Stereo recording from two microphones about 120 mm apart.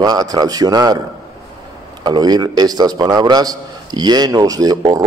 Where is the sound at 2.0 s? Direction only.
35° right (ahead or behind).